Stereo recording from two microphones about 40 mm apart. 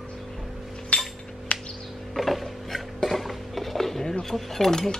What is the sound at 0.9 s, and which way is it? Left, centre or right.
Chink, left.